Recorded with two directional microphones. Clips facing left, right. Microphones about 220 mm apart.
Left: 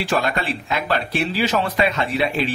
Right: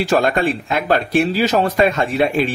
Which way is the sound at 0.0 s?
45° right (ahead or behind).